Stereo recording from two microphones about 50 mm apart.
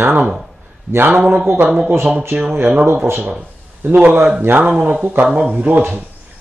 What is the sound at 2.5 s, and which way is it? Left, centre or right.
Speech, right.